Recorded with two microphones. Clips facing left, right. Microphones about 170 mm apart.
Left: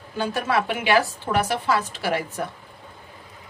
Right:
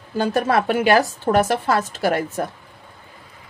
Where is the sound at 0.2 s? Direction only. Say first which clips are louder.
Right 5 dB; 45° right (ahead or behind).